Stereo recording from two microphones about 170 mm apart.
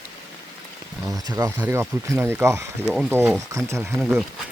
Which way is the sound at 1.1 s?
20° right (ahead or behind).